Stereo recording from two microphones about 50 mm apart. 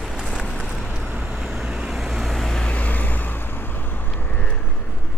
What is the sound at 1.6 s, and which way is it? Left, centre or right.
Vehicle, centre.